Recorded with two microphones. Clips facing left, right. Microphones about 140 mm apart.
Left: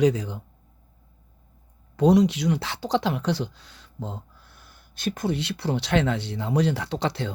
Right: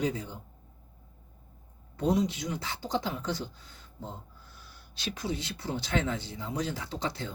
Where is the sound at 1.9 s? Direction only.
85° left.